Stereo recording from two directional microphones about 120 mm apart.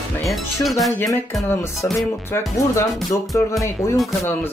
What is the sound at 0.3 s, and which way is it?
Speech, centre (ahead or behind).